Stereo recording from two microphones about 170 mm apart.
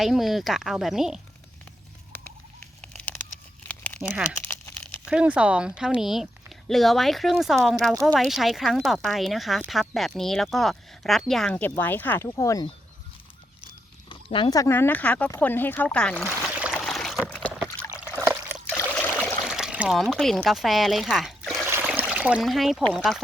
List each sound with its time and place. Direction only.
0.0 s speech: centre (ahead or behind)
2.8 s a sound: 5° left (ahead or behind)
4.1 s speech: 10° right (ahead or behind)
4.4 s crumpling: 15° left (ahead or behind)
5.0 s speech: 5° right (ahead or behind); by 12.6 s 20° left (ahead or behind)
14.1 s speech: 30° left (ahead or behind); by 16.3 s 5° left (ahead or behind)
16.7 s a sound: 5° left (ahead or behind)
18.2 s trickle: 15° right (ahead or behind)
18.8 s trickle: 10° left (ahead or behind)
19.5 s speech: 5° right (ahead or behind)